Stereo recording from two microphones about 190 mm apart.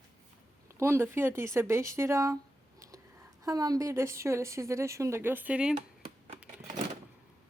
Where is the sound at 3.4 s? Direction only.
20° right (ahead or behind).